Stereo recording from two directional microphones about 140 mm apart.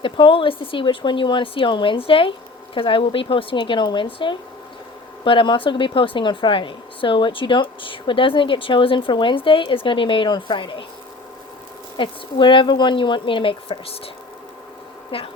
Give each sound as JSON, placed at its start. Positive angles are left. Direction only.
{"t": 0.0, "sound": "speech", "side_deg": 40}
{"t": 11.9, "sound": "speech", "side_deg": 35}
{"t": 15.1, "sound": "speech", "side_deg": 40}